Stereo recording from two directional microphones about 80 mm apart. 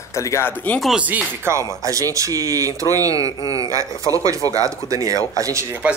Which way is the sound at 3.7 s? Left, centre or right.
Right.